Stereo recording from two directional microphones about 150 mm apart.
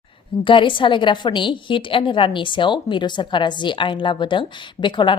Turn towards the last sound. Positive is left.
turn(degrees=30)  # may be behind; listen again after turning